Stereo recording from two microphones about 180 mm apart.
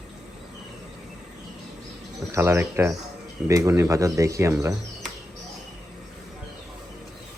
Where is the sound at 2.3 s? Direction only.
15° right (ahead or behind).